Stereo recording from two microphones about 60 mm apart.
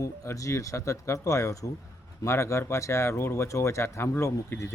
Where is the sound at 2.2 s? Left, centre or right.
Left.